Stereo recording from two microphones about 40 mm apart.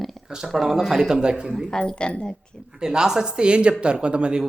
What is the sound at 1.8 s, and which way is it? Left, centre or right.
Speech, left.